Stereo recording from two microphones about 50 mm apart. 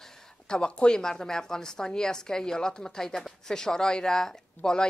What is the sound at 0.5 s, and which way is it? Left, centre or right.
A woman's voice, centre.